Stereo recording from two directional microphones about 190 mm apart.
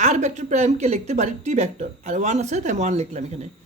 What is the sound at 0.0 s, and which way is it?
Speech, 35° right (ahead or behind).